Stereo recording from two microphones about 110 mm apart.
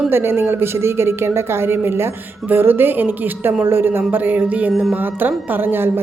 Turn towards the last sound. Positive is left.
turn(degrees=-20)  # may be behind; listen again after turning